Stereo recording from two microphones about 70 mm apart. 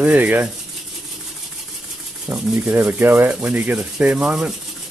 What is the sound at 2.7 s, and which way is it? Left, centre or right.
Speech, right.